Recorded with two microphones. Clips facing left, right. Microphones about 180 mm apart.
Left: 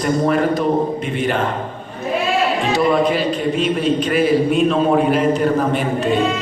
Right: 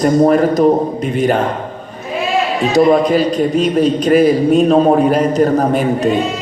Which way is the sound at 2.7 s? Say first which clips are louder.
Right 7 dB; 40° right (ahead or behind).